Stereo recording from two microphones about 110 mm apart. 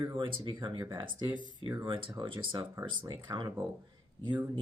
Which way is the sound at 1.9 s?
50° right (ahead or behind).